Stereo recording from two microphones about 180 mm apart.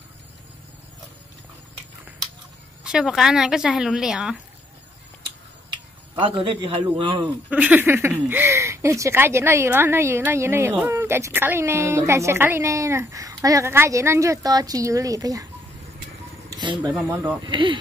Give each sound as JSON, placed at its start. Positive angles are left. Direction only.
{"t": 2.8, "sound": "speech", "side_deg": -5}
{"t": 6.1, "sound": "a man's voice", "side_deg": -30}
{"t": 7.4, "sound": "speech", "side_deg": -10}
{"t": 16.5, "sound": "speech", "side_deg": -25}
{"t": 16.9, "sound": "speech", "side_deg": -10}
{"t": 17.4, "sound": "a man's voice", "side_deg": -25}